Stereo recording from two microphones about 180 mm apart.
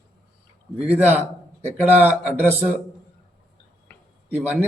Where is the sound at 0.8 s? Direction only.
10° right (ahead or behind).